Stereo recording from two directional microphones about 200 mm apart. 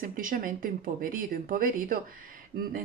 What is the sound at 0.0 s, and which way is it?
Speech, 45° right (ahead or behind).